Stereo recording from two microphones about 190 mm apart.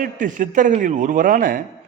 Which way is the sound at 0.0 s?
45° right (ahead or behind).